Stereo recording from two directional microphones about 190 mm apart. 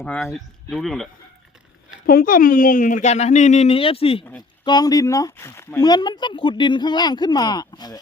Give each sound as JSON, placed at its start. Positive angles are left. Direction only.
{"t": 0.0, "sound": "speech", "side_deg": 10}
{"t": 2.0, "sound": "a woman's voice", "side_deg": 50}